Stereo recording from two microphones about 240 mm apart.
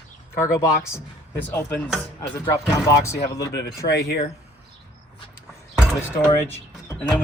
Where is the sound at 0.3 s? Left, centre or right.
Centre.